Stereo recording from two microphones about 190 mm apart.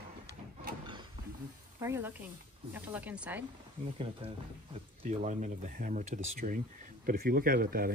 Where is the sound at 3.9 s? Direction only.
30° right (ahead or behind).